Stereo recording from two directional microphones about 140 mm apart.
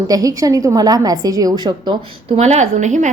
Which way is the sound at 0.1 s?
25° right (ahead or behind).